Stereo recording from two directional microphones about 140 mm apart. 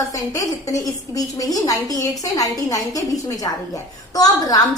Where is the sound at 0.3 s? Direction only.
25° left (ahead or behind).